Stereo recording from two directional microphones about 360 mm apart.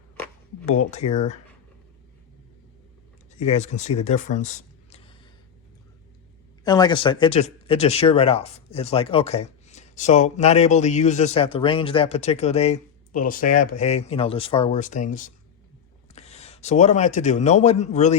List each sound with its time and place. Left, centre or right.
0.9 s speech: centre
3.3 s speech: centre
6.7 s a man's voice: centre